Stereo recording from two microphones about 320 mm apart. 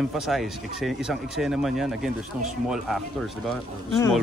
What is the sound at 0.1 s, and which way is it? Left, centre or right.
Speech, centre.